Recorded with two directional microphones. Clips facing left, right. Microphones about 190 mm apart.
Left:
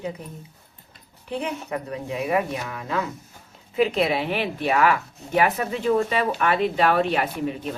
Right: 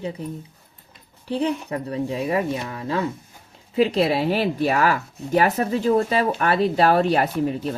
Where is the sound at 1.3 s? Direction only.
35° right (ahead or behind).